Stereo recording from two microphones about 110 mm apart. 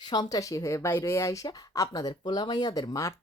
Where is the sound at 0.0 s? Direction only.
40° left (ahead or behind).